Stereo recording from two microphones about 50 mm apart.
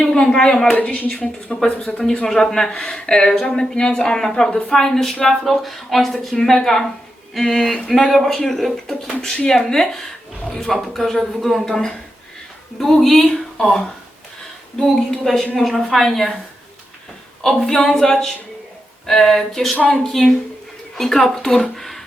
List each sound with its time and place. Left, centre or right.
0.0 s a sound: centre
0.3 s speech: centre
0.8 s speech: left
2.2 s speech: centre
17.4 s speech: centre